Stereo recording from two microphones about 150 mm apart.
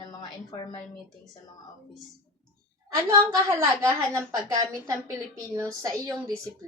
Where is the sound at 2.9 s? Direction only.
20° right (ahead or behind).